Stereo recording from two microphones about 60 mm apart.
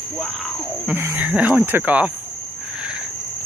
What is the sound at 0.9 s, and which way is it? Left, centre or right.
Speech, right.